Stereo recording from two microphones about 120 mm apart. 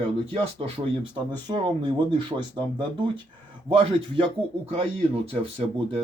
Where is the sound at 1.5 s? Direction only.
40° right (ahead or behind).